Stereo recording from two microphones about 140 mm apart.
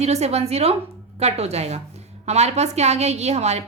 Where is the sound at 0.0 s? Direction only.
50° right (ahead or behind).